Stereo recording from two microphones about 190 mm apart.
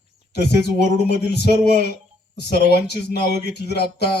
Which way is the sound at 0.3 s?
60° left (ahead or behind).